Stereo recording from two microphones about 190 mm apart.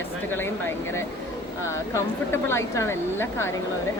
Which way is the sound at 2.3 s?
15° left (ahead or behind).